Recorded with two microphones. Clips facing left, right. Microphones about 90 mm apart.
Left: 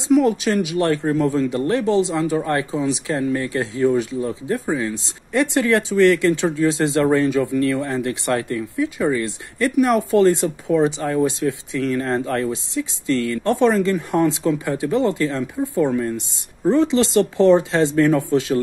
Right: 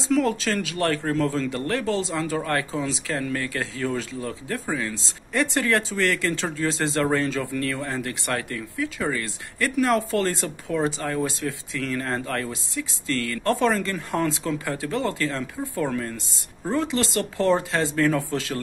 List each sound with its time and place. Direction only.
0.1 s speech: 20° left (ahead or behind)